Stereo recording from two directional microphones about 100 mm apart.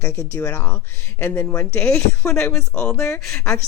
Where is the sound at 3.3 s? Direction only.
30° left (ahead or behind).